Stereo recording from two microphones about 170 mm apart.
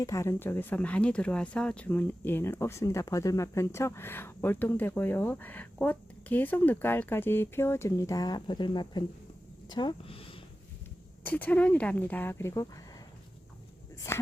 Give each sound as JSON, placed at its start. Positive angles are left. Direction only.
{"t": 0.0, "sound": "speech", "side_deg": 15}
{"t": 11.2, "sound": "speech", "side_deg": 10}
{"t": 14.1, "sound": "speech", "side_deg": 15}